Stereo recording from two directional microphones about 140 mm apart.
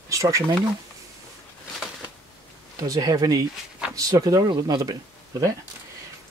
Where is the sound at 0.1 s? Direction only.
25° right (ahead or behind).